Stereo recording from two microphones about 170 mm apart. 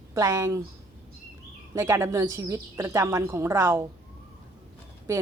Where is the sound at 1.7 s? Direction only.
20° right (ahead or behind).